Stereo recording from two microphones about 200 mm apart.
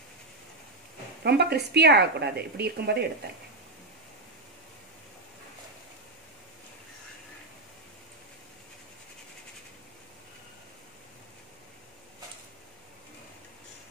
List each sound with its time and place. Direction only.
1.2 s speech: 55° right (ahead or behind)